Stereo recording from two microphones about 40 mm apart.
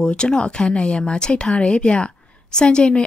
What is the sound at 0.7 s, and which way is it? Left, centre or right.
A woman's voice, left.